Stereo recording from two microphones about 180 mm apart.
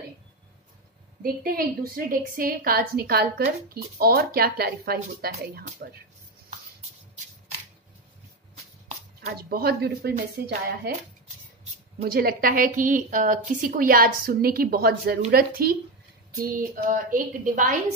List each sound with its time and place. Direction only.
1.2 s a woman's voice: 55° right (ahead or behind)
9.3 s a woman's voice: 55° right (ahead or behind)
12.0 s a woman's voice: 55° right (ahead or behind)